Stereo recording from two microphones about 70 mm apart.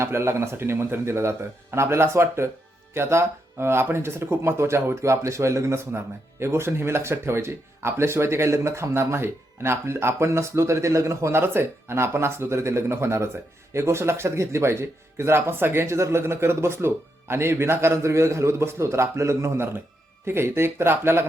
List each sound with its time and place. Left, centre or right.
0.0 s speech: right